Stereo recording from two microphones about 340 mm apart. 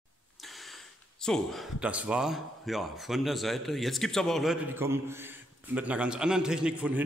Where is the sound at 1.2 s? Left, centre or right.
Centre.